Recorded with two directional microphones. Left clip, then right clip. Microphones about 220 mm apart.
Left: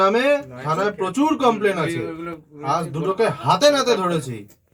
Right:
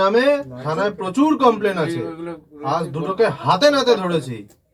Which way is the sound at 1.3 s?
35° left (ahead or behind).